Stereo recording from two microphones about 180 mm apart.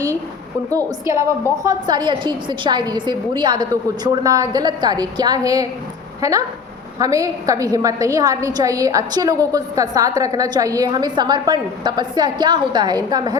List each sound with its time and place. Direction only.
1.1 s a woman's voice: 15° right (ahead or behind)
7.0 s a woman's voice: 20° right (ahead or behind)